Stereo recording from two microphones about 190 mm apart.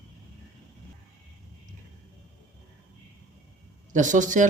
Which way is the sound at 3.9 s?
40° right (ahead or behind).